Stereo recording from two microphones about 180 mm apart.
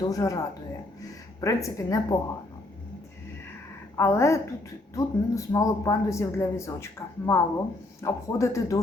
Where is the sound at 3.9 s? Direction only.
15° left (ahead or behind).